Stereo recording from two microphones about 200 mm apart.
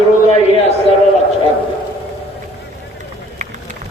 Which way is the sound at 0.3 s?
30° left (ahead or behind).